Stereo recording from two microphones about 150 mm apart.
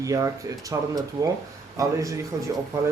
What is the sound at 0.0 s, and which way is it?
Speech, 20° right (ahead or behind).